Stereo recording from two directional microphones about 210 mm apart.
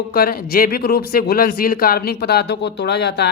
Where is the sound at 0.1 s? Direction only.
45° left (ahead or behind).